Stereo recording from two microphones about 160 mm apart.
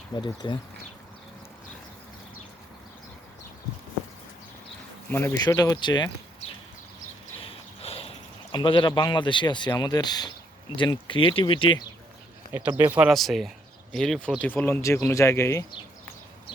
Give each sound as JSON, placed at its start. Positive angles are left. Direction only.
{"t": 0.2, "sound": "speech", "side_deg": 30}
{"t": 5.0, "sound": "speech", "side_deg": 15}
{"t": 7.8, "sound": "a sound", "side_deg": 40}
{"t": 8.5, "sound": "speech", "side_deg": 30}
{"t": 12.5, "sound": "speech", "side_deg": -15}
{"t": 13.1, "sound": "speech", "side_deg": 0}